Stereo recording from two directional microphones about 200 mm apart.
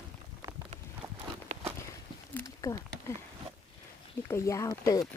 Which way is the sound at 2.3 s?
15° left (ahead or behind).